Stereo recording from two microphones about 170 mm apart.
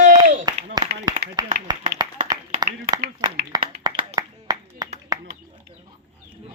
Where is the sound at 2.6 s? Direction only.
25° right (ahead or behind).